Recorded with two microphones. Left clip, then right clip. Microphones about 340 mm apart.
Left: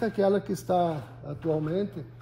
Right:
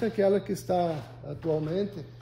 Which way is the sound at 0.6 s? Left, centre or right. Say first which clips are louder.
Left 2 dB; centre.